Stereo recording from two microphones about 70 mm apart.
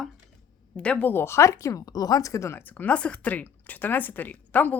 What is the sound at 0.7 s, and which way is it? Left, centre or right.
Speech, centre.